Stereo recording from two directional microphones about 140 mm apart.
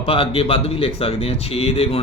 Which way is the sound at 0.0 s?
40° left (ahead or behind).